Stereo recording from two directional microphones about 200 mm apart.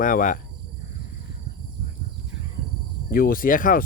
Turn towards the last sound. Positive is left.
turn(degrees=45)  # may be behind; listen again after turning